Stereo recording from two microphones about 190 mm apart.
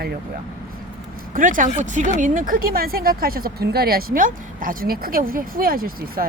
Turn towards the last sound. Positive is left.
turn(degrees=-50)  # may be behind; listen again after turning